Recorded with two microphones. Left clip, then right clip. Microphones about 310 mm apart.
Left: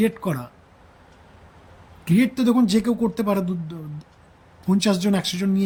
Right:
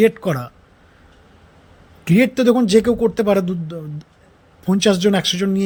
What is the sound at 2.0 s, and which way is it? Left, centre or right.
A man's voice, centre.